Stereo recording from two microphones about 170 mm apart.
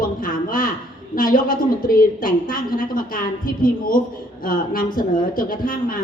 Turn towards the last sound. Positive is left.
turn(degrees=55)  # may be behind; listen again after turning